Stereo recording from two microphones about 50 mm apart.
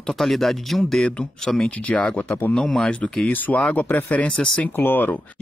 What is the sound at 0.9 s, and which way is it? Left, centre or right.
Speech, centre.